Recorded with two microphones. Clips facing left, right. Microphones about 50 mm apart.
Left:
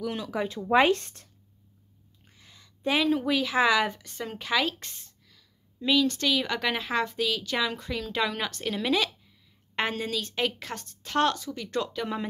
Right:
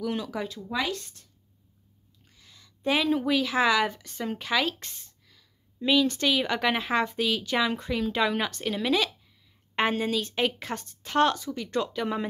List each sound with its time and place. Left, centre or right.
0.0 s a woman's voice: centre
0.6 s speech: left
2.3 s a sound: centre
2.8 s a woman's voice: centre
5.8 s speech: centre
9.8 s speech: centre